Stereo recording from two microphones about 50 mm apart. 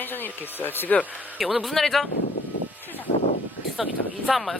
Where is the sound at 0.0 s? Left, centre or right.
Left.